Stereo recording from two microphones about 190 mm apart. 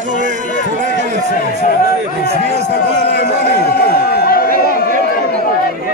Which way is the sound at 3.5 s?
55° left (ahead or behind).